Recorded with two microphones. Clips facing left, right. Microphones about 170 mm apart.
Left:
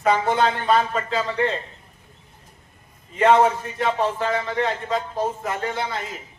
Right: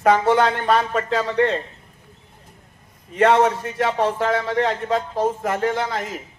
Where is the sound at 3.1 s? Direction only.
75° right (ahead or behind).